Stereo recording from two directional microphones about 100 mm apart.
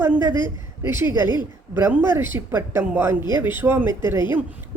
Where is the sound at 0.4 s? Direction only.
25° right (ahead or behind).